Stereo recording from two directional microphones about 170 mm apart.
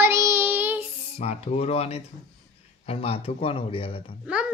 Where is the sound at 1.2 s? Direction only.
40° left (ahead or behind).